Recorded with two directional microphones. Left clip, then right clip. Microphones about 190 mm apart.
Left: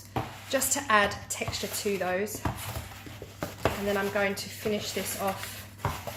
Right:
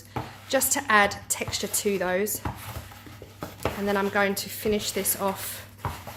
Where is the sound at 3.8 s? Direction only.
50° right (ahead or behind).